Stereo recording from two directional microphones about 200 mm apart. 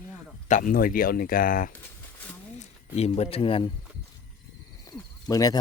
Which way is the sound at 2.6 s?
30° left (ahead or behind).